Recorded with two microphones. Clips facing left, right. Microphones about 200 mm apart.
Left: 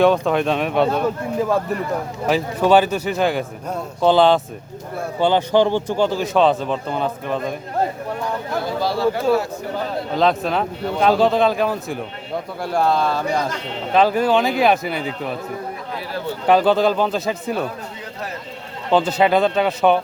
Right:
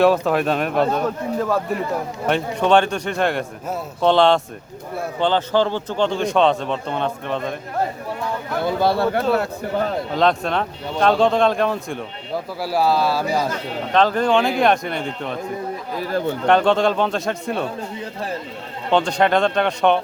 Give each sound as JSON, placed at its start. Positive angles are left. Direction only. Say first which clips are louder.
{"t": 0.0, "sound": "a man's voice", "louder": "even", "side_deg": 0}
{"t": 5.2, "sound": "a man's voice", "louder": "left 3 dB", "side_deg": 15}
{"t": 8.8, "sound": "speech", "louder": "right 1 dB", "side_deg": -60}
{"t": 10.2, "sound": "a man's voice", "louder": "left 1 dB", "side_deg": 0}
{"t": 13.9, "sound": "a man's voice", "louder": "left 1 dB", "side_deg": 10}
{"t": 16.5, "sound": "a man's voice", "louder": "left 2 dB", "side_deg": 5}
{"t": 18.9, "sound": "a man's voice", "louder": "left 1 dB", "side_deg": 5}